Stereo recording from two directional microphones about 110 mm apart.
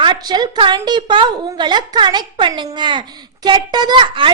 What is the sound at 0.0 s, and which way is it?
A woman's voice, 45° right (ahead or behind).